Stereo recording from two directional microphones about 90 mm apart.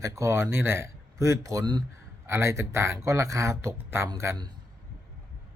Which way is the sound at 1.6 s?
55° right (ahead or behind).